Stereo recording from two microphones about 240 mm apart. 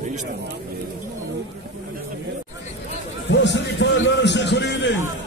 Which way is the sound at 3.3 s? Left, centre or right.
Left.